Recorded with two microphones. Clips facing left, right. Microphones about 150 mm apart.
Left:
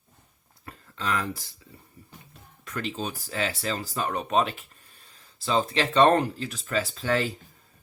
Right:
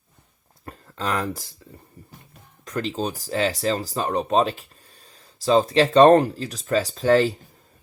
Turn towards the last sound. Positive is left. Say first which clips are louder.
# right 8 dB
turn(degrees=-35)  # may be behind; listen again after turning